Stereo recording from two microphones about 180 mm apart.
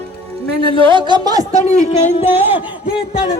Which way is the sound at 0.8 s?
25° right (ahead or behind).